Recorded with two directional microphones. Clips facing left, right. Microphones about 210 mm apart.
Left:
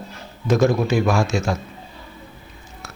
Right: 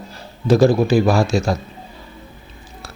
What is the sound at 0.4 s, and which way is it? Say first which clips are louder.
Speech: right 4 dB; 35° right (ahead or behind).